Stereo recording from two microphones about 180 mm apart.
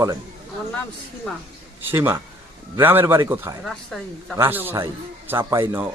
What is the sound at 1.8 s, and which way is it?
A man's voice, 10° right (ahead or behind).